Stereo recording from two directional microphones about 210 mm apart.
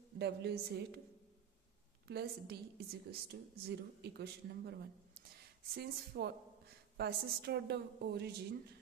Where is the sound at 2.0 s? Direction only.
50° right (ahead or behind).